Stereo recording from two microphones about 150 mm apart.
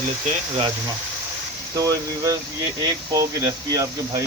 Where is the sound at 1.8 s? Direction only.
20° right (ahead or behind).